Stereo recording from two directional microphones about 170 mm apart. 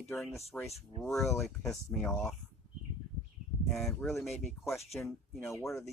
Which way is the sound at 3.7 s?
Centre (ahead or behind).